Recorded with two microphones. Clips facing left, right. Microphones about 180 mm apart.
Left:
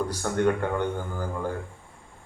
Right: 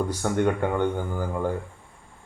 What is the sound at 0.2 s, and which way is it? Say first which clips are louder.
Speech: even; 20° right (ahead or behind).